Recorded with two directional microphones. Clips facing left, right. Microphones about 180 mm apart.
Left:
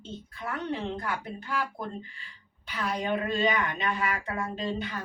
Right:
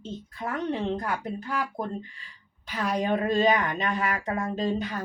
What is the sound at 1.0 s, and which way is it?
A woman's voice, 35° right (ahead or behind).